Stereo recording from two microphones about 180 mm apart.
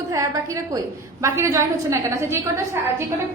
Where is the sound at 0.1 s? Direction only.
20° right (ahead or behind).